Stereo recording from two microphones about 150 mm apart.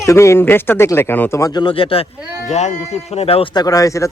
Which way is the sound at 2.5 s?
50° left (ahead or behind).